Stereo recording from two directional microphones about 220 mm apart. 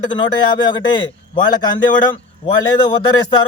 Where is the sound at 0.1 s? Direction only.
20° left (ahead or behind).